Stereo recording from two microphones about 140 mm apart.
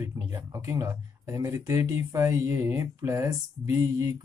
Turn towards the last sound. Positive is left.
turn(degrees=-25)  # may be behind; listen again after turning